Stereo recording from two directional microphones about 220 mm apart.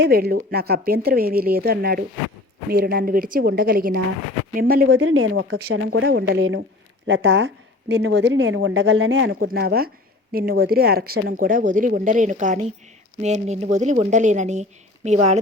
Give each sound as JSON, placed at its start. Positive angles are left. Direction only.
{"t": 0.0, "sound": "a woman's voice", "side_deg": -45}
{"t": 4.9, "sound": "a woman's voice", "side_deg": -70}
{"t": 6.4, "sound": "a woman's voice", "side_deg": -60}
{"t": 9.3, "sound": "a woman's voice", "side_deg": -40}